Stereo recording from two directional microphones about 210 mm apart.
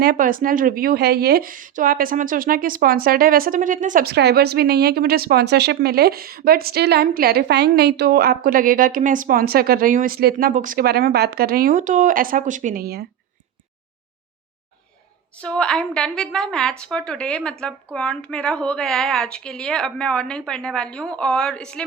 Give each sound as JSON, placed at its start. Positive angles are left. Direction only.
{"t": 0.0, "sound": "a woman's voice", "side_deg": -40}
{"t": 15.4, "sound": "a woman's voice", "side_deg": 5}